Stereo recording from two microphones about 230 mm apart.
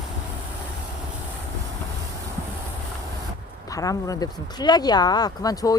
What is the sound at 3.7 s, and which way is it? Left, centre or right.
Speech, centre.